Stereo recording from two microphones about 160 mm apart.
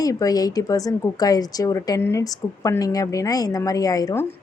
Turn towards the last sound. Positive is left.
turn(degrees=20)  # may be behind; listen again after turning